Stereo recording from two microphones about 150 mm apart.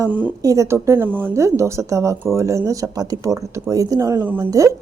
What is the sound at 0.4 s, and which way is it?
Speech, 20° right (ahead or behind).